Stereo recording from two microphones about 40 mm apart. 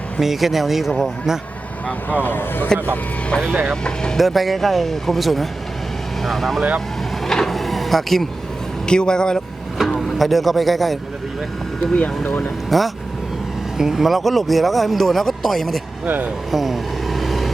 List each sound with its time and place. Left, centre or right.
0.2 s speech: centre
2.0 s speech: left
3.4 s speech: right
3.8 s vehicle: left
4.2 s speech: centre
7.3 s printer: centre
7.5 s vehicle: centre
8.9 s speech: left
10.2 s speech: centre
11.9 s speech: left
12.7 s speech: centre
13.7 s speech: centre
16.0 s speech: right
16.5 s vehicle: centre